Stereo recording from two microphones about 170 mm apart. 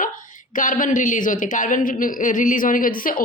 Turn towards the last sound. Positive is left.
turn(degrees=55)  # may be behind; listen again after turning